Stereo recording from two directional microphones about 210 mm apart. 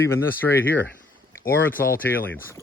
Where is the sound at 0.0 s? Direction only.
10° left (ahead or behind).